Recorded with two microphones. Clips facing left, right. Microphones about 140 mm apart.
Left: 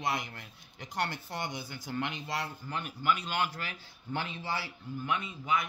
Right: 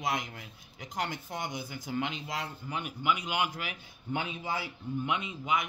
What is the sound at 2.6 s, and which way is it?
A man's voice, 10° right (ahead or behind).